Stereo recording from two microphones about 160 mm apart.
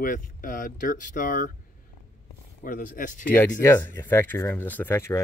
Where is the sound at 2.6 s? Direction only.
55° left (ahead or behind).